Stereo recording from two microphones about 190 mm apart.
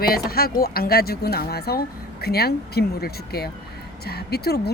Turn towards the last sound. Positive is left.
turn(degrees=55)  # may be behind; listen again after turning